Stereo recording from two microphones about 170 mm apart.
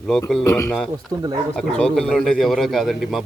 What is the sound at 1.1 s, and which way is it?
Speech, 20° right (ahead or behind).